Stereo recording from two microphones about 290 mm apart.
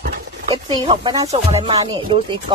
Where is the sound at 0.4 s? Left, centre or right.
Centre.